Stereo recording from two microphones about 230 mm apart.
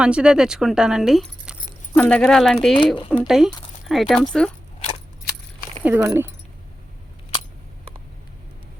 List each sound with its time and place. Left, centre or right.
0.0 s speech: centre
2.7 s speech: left
3.2 s speech: centre
5.2 s keys jangling: left
5.8 s speech: centre